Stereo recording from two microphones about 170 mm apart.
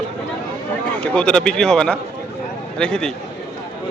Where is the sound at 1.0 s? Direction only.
5° left (ahead or behind).